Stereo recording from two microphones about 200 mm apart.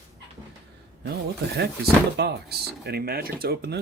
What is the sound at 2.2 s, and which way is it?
Speech, 55° right (ahead or behind).